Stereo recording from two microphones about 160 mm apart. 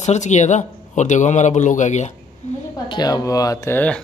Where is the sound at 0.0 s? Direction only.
45° left (ahead or behind).